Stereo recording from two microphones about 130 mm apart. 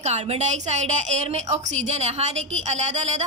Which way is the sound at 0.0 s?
60° right (ahead or behind).